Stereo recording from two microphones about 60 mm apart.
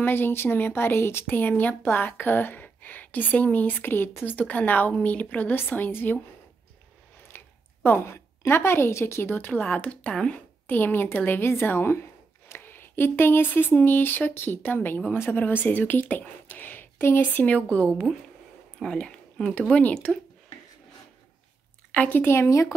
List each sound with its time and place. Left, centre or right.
0.0 s a woman's voice: left
4.4 s speech: left
7.3 s speech: left
9.8 s speech: centre
10.7 s speech: left; by 20.2 s centre
21.9 s speech: left
22.2 s speech: left
22.5 s speech: left